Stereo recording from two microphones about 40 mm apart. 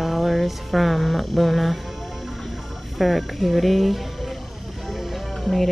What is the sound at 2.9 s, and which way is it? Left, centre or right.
Speech, centre.